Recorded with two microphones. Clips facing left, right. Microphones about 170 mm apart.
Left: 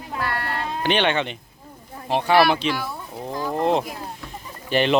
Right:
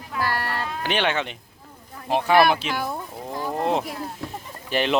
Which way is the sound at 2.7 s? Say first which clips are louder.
Left 1 dB; 50° right (ahead or behind).